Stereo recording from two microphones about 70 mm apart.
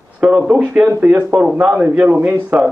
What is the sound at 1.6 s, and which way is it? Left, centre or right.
Speech, right.